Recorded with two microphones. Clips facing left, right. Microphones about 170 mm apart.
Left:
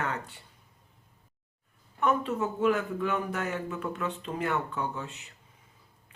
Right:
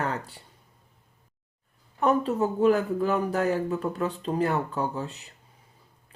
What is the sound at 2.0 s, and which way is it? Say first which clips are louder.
Speech: right 4 dB; 35° right (ahead or behind).